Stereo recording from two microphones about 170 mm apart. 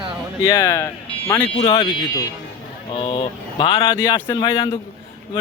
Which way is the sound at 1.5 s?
40° left (ahead or behind).